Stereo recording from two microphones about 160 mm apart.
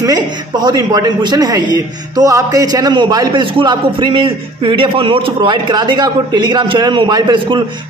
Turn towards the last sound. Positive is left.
turn(degrees=-30)  # may be behind; listen again after turning